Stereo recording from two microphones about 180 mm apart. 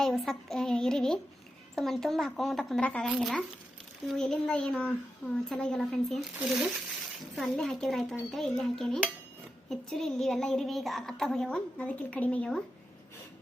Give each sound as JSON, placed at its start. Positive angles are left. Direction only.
{"t": 0.0, "sound": "a woman's voice", "side_deg": 0}
{"t": 7.3, "sound": "a woman's voice", "side_deg": 0}